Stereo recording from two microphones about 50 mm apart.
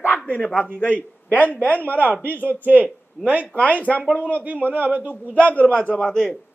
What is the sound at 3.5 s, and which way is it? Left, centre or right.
Speech, left.